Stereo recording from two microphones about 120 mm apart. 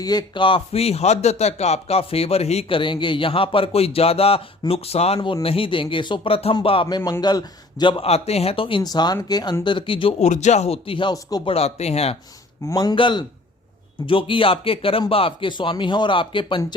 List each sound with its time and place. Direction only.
0.0 s a man's voice: 35° left (ahead or behind)
6.8 s a man's voice: 30° left (ahead or behind); by 8.8 s 50° left (ahead or behind)
8.8 s a man's voice: 35° left (ahead or behind)
10.2 s speech: 75° left (ahead or behind); by 11.1 s 45° left (ahead or behind)
11.1 s speech: 30° left (ahead or behind)
11.4 s speech: 60° left (ahead or behind)
12.7 s a man's voice: 35° left (ahead or behind)